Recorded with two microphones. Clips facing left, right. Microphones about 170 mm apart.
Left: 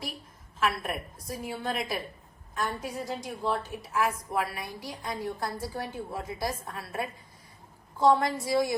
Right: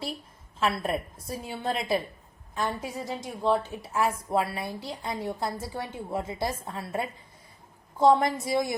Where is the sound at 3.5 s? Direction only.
30° right (ahead or behind).